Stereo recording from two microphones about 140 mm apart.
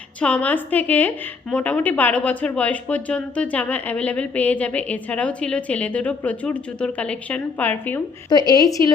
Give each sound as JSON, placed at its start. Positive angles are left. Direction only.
{"t": 0.2, "sound": "speech", "side_deg": 10}
{"t": 8.3, "sound": "speech", "side_deg": 30}